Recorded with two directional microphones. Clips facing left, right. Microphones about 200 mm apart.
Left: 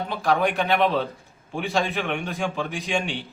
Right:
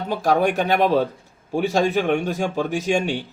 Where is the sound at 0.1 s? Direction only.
40° right (ahead or behind).